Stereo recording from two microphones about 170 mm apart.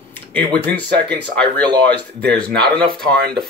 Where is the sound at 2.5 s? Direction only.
65° right (ahead or behind).